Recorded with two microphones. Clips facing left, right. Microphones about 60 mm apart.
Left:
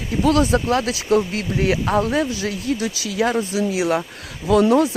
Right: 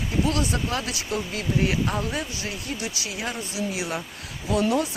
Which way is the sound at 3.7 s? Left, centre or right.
Left.